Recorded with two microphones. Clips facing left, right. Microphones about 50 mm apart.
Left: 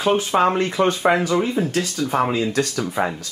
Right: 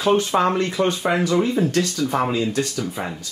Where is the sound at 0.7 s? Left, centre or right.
Left.